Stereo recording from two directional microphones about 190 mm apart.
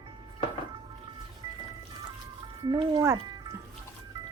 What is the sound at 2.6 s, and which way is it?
Speech, 25° right (ahead or behind).